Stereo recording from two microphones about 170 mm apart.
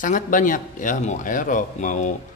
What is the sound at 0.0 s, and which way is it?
A man's voice, 50° left (ahead or behind).